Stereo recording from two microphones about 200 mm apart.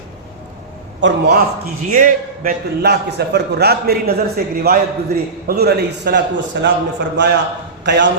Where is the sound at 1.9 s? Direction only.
45° right (ahead or behind).